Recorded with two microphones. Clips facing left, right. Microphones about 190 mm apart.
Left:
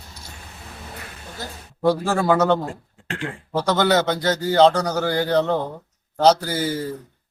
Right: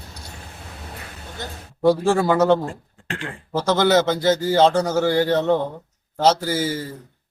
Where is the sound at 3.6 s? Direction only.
5° right (ahead or behind).